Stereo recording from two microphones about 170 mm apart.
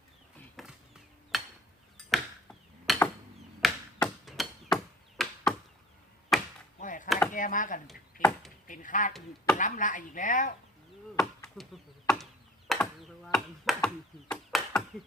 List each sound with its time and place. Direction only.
0.3 s a sound: centre (ahead or behind)
3.6 s chop: centre (ahead or behind)
6.3 s chop: centre (ahead or behind)
6.7 s chop: 50° left (ahead or behind)
7.3 s chopping: 50° left (ahead or behind)
8.2 s chop: centre (ahead or behind)
8.6 s chopping: 50° left (ahead or behind)
11.2 s speech: 5° left (ahead or behind)
12.0 s chop: centre (ahead or behind)